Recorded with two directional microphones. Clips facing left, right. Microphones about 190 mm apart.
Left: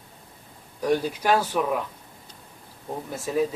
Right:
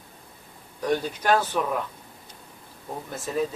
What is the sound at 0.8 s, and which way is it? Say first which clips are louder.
Speech: left 1 dB; 5° left (ahead or behind).